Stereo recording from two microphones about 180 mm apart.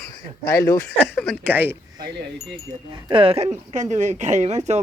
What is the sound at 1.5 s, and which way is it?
Speech, 10° right (ahead or behind).